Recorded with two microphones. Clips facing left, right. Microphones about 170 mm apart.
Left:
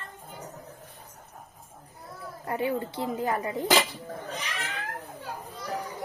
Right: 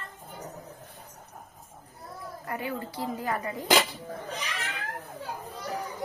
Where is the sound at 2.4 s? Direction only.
25° left (ahead or behind).